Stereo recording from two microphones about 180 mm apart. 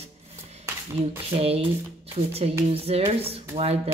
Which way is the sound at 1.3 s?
35° right (ahead or behind).